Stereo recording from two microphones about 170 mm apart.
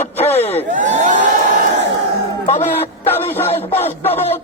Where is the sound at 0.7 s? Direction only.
45° right (ahead or behind).